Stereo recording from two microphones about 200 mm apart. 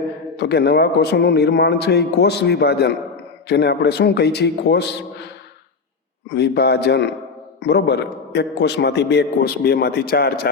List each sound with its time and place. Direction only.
0.3 s a man's voice: 55° left (ahead or behind)
6.3 s a man's voice: 55° left (ahead or behind)